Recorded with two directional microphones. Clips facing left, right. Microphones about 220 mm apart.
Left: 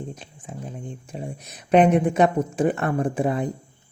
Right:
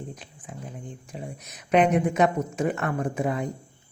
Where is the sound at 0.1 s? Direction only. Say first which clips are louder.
Left 3 dB; 25° left (ahead or behind).